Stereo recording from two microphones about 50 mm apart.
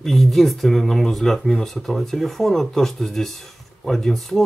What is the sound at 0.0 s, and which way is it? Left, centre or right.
Speech, centre.